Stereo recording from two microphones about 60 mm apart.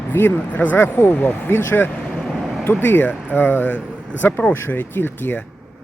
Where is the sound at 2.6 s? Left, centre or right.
Left.